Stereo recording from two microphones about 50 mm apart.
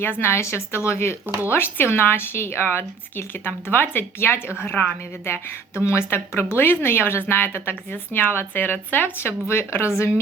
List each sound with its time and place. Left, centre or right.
0.0 s a woman's voice: left
5.8 s speech: left